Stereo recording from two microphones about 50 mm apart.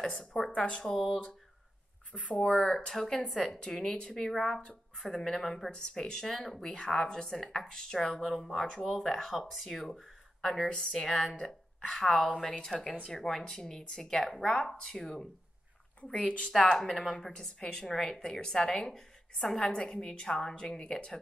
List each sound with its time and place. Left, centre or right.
0.0 s a woman's voice: centre
0.7 s a woman's voice: centre
0.9 s a woman's voice: centre
2.3 s a woman's voice: centre
8.6 s a woman's voice: centre
11.3 s speech: centre
11.9 s a woman's voice: centre
16.0 s a woman's voice: left
16.7 s a woman's voice: centre